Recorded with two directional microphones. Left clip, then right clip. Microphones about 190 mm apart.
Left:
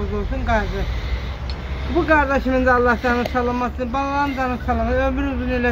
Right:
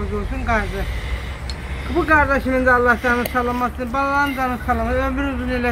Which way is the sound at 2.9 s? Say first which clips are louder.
Right 2 dB; 15° left (ahead or behind).